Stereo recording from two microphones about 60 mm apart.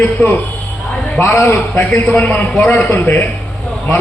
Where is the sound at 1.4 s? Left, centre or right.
Left.